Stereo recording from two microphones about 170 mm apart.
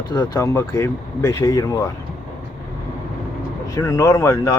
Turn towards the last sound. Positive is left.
turn(degrees=20)  # may be behind; listen again after turning